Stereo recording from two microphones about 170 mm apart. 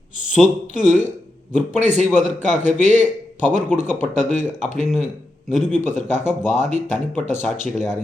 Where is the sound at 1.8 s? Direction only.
45° right (ahead or behind).